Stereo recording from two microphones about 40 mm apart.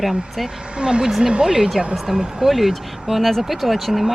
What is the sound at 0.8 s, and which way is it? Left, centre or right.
Speech, right.